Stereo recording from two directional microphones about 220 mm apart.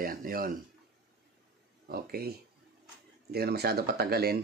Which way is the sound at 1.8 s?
45° right (ahead or behind).